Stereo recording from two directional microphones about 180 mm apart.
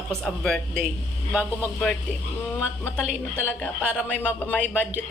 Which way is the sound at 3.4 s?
5° left (ahead or behind).